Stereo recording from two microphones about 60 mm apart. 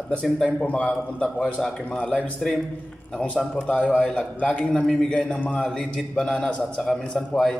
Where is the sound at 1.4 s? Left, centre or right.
Centre.